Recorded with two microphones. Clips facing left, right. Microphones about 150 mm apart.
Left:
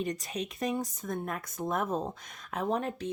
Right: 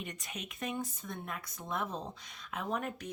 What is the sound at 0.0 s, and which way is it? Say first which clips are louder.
Speech: left 10 dB; 35° left (ahead or behind).